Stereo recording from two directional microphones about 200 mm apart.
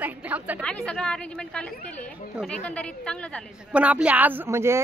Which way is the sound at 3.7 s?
5° right (ahead or behind).